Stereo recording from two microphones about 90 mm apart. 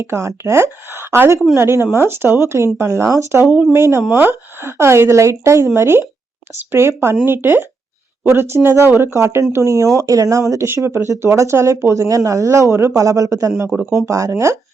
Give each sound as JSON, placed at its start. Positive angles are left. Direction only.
{"t": 0.0, "sound": "speech", "side_deg": -35}